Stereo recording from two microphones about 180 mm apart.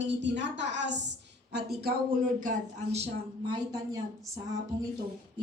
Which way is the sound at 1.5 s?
65° right (ahead or behind).